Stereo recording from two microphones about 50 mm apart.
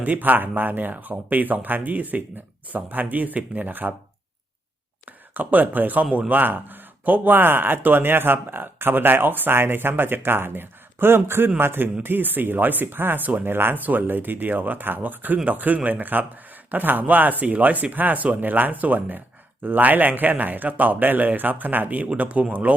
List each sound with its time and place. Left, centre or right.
0.0 s speech: right
5.3 s speech: right